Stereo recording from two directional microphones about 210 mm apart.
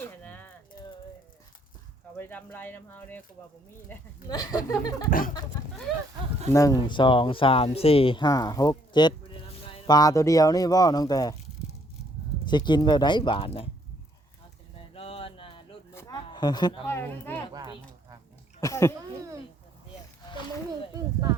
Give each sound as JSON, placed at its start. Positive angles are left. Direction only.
{"t": 0.0, "sound": "a sound", "side_deg": 10}
{"t": 2.1, "sound": "speech", "side_deg": 10}
{"t": 6.5, "sound": "speech", "side_deg": 15}
{"t": 12.5, "sound": "speech", "side_deg": 20}
{"t": 14.9, "sound": "a sound", "side_deg": 25}
{"t": 16.0, "sound": "speech", "side_deg": 20}
{"t": 17.5, "sound": "speech", "side_deg": -20}
{"t": 18.6, "sound": "speech", "side_deg": 15}